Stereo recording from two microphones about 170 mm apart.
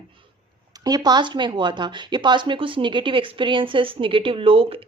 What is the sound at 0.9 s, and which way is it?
Speech, 25° right (ahead or behind).